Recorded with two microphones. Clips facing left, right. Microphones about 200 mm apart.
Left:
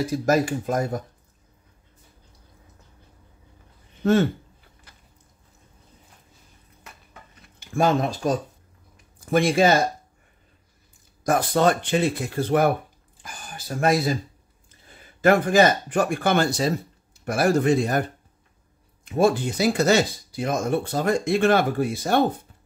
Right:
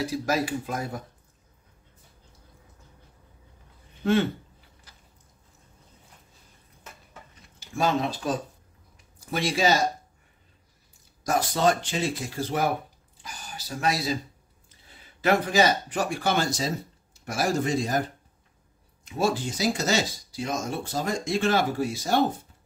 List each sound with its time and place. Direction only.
0.0 s speech: 50° left (ahead or behind)
4.0 s speech: 45° left (ahead or behind)
4.9 s a sound: 60° left (ahead or behind)
7.6 s speech: 55° left (ahead or behind)
11.2 s speech: 55° left (ahead or behind)
19.0 s speech: 55° left (ahead or behind)